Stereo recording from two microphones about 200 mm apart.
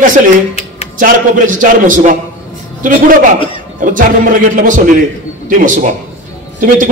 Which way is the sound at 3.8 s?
40° right (ahead or behind).